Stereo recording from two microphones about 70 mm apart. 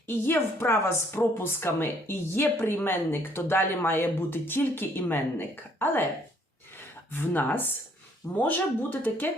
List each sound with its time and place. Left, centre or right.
0.1 s speech: left
7.1 s speech: left